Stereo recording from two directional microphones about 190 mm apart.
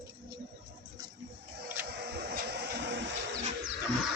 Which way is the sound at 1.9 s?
60° right (ahead or behind).